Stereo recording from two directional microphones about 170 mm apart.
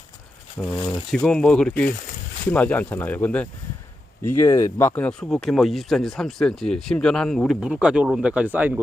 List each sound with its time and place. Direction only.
1.1 s speech: 5° left (ahead or behind)